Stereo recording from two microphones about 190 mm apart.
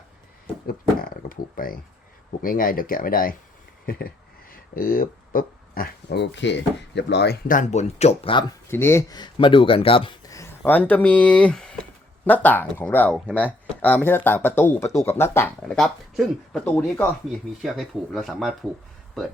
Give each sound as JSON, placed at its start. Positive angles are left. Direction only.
{"t": 0.7, "sound": "a sound", "side_deg": 50}
{"t": 2.4, "sound": "speech", "side_deg": 50}
{"t": 8.7, "sound": "speech", "side_deg": 15}
{"t": 15.6, "sound": "speech", "side_deg": 0}
{"t": 17.6, "sound": "speech", "side_deg": 0}